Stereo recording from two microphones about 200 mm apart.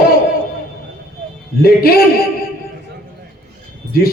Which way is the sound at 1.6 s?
50° left (ahead or behind).